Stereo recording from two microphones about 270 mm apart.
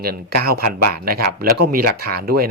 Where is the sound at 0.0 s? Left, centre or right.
Right.